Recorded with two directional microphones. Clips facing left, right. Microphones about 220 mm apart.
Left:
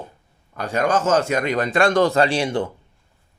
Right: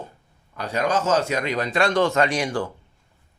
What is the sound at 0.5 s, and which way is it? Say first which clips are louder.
A man's voice: left 3 dB; 50° left (ahead or behind).